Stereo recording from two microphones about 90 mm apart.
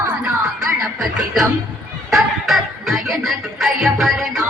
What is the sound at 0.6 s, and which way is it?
Music, 5° right (ahead or behind).